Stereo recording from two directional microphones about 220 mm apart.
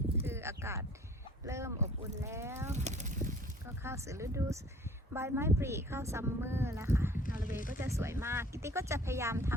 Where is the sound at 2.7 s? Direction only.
30° right (ahead or behind).